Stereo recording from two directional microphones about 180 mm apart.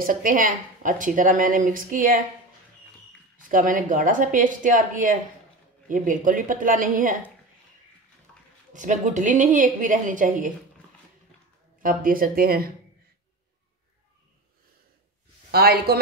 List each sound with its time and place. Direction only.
0.0 s a woman's voice: 50° right (ahead or behind)
3.4 s a woman's voice: 50° right (ahead or behind)
8.7 s a woman's voice: 45° right (ahead or behind)
11.8 s a woman's voice: 50° right (ahead or behind)
15.5 s speech: 60° right (ahead or behind)